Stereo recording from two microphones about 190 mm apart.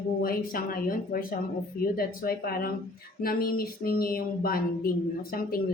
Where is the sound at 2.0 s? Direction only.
50° left (ahead or behind).